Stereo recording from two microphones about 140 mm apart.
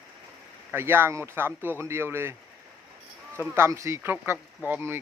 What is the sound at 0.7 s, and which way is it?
Speech, 15° right (ahead or behind).